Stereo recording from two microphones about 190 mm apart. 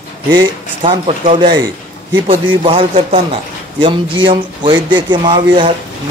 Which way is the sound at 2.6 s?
30° right (ahead or behind).